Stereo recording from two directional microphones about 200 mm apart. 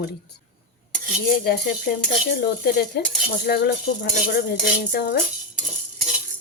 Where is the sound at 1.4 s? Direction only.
50° left (ahead or behind).